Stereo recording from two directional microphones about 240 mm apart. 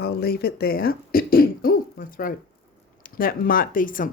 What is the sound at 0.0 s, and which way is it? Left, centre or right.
Speech, left.